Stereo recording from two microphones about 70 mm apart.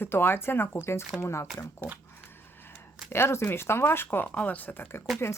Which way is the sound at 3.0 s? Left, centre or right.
Left.